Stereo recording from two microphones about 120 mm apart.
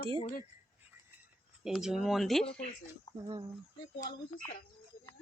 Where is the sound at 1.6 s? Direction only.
5° right (ahead or behind).